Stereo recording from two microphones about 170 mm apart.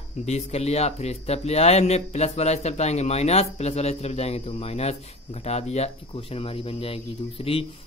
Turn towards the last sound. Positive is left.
turn(degrees=35)  # may be behind; listen again after turning